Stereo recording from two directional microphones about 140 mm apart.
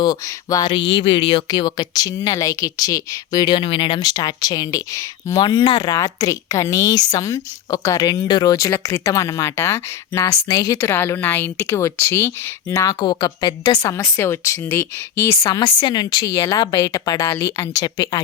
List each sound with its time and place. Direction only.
0.0 s speech: 30° left (ahead or behind)
15.4 s speech: 30° left (ahead or behind)